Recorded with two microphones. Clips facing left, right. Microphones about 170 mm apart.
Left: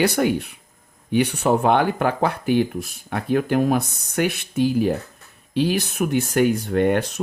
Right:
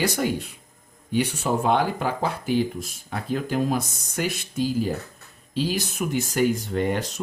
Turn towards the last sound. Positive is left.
turn(degrees=60)  # may be behind; listen again after turning